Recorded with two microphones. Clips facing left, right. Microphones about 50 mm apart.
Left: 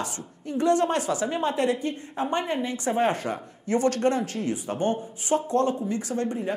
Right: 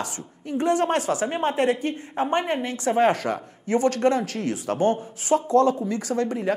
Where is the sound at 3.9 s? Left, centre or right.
Right.